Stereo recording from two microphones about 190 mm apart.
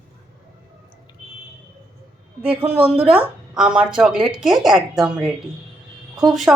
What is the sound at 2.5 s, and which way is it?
Speech, 30° right (ahead or behind).